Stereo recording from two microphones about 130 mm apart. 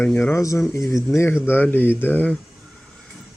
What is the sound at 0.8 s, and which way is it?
Speech, centre (ahead or behind).